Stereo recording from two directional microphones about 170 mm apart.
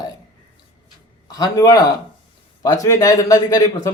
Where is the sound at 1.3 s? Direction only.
25° left (ahead or behind).